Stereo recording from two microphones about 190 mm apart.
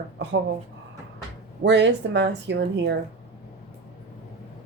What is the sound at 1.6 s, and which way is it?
Speech, 70° right (ahead or behind).